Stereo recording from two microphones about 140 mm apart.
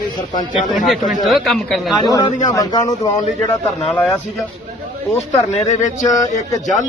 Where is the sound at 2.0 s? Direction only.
30° left (ahead or behind).